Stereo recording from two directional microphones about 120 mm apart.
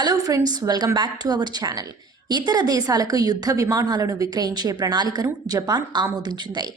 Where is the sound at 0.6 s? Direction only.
30° right (ahead or behind).